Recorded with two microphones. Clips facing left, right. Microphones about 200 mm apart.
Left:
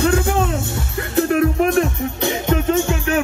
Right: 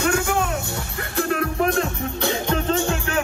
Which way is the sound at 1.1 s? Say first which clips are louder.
Left 7 dB; 20° left (ahead or behind).